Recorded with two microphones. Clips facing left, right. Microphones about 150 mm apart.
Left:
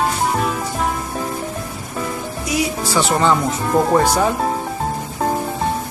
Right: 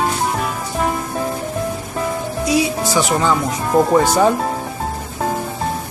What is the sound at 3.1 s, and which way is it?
Speech, centre (ahead or behind).